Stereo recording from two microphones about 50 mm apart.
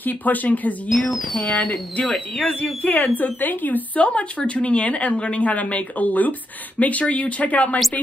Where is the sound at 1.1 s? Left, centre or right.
Centre.